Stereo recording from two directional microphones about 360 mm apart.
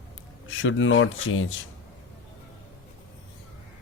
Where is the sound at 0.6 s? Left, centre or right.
Left.